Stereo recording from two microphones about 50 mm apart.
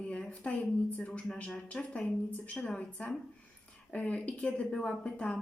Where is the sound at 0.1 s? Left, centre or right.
Left.